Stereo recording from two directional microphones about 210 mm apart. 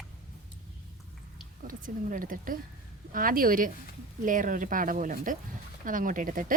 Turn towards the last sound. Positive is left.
turn(degrees=-40)  # may be behind; listen again after turning